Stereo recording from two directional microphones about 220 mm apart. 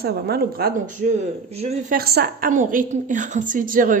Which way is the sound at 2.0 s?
45° right (ahead or behind).